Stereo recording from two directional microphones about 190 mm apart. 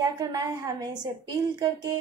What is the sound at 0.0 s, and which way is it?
Speech, 20° right (ahead or behind).